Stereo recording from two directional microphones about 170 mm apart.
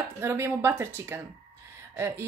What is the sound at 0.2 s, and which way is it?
A woman's voice, 15° right (ahead or behind).